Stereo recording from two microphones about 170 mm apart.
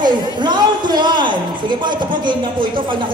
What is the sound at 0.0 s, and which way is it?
A man's voice, 25° right (ahead or behind).